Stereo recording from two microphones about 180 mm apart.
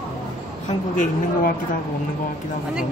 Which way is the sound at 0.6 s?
45° left (ahead or behind).